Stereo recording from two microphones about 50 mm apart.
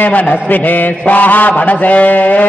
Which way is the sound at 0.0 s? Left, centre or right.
Left.